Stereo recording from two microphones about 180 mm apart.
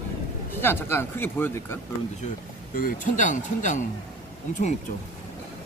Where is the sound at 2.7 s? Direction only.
50° left (ahead or behind).